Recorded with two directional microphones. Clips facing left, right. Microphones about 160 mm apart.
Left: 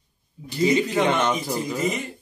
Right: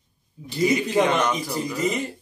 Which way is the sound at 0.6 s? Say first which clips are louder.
Even; 25° left (ahead or behind).